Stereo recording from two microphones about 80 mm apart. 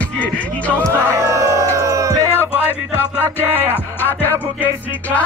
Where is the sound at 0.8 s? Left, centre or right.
Right.